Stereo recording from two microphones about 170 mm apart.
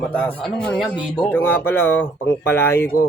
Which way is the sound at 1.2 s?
10° left (ahead or behind).